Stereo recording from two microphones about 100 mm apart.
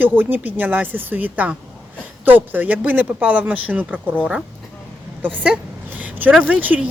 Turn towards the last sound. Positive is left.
turn(degrees=-15)  # may be behind; listen again after turning